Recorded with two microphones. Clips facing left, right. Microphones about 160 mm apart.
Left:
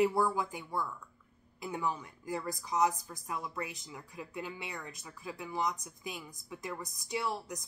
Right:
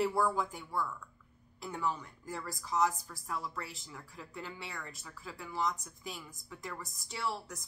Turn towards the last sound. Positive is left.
turn(degrees=15)  # may be behind; listen again after turning